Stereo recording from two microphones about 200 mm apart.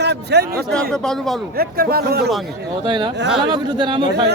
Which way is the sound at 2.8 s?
20° right (ahead or behind).